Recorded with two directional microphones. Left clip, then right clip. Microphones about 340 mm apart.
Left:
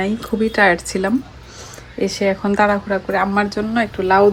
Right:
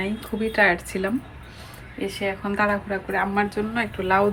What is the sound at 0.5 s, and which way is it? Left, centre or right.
Speech, centre.